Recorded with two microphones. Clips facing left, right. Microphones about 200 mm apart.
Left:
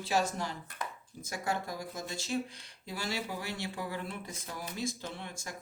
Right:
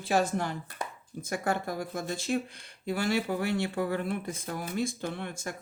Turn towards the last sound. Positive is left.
turn(degrees=-55)  # may be behind; listen again after turning